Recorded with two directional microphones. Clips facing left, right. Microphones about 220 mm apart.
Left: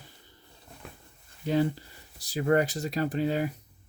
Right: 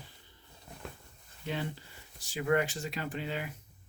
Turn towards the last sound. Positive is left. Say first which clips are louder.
# left 9 dB
turn(degrees=40)  # may be behind; listen again after turning